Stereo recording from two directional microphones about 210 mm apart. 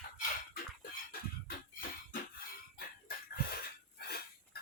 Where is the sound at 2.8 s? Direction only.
45° left (ahead or behind).